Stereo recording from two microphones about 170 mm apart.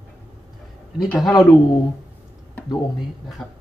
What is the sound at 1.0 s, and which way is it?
Speech, 5° left (ahead or behind).